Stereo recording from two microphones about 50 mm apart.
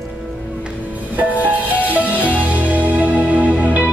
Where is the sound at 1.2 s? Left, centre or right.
Right.